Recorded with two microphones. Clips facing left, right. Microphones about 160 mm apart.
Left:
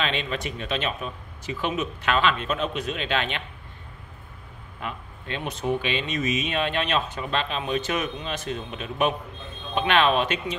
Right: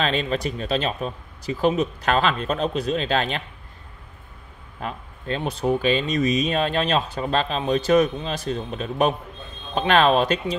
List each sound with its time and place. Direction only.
0.0 s speech: 40° right (ahead or behind)
4.8 s speech: 35° right (ahead or behind)